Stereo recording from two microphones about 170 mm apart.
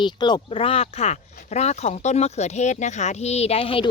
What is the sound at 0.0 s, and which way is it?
Speech, 25° left (ahead or behind).